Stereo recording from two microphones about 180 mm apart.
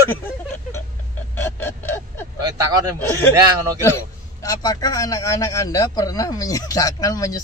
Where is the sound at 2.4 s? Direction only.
20° right (ahead or behind).